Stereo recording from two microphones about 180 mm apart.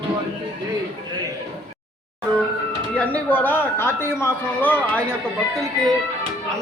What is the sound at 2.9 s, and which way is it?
Speech, 10° left (ahead or behind).